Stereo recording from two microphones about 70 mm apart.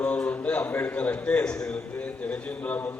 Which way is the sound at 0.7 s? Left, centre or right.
Left.